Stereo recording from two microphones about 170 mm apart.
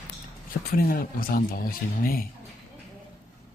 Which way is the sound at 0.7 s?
60° left (ahead or behind).